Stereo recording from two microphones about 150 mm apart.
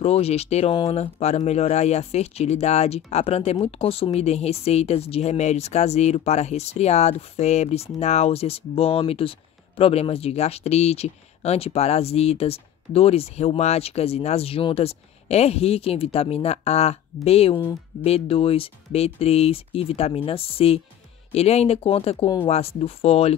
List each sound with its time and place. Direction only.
0.0 s speech: 45° left (ahead or behind)